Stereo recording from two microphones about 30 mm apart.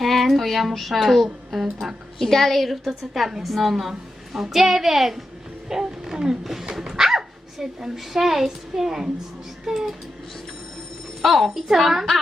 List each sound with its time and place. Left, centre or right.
0.0 s music: centre
0.7 s a woman's voice: centre
2.1 s a woman's voice: centre
5.8 s a sound: right
6.8 s a child's voice: centre
11.2 s a woman's voice: centre
11.7 s a child's voice: centre